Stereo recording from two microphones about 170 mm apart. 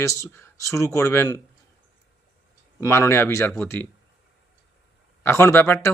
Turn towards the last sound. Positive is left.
turn(degrees=15)  # may be behind; listen again after turning